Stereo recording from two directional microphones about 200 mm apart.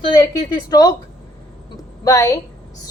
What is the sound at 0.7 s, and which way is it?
Speech, 20° left (ahead or behind).